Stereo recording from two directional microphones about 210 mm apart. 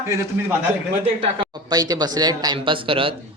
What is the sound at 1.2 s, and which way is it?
Speech, 25° right (ahead or behind).